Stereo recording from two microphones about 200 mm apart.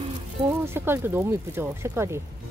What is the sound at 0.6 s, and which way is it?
Speech, 10° right (ahead or behind).